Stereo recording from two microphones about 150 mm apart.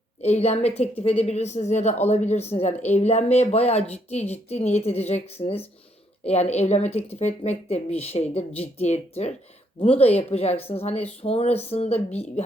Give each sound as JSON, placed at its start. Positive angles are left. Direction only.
{"t": 0.2, "sound": "speech", "side_deg": 45}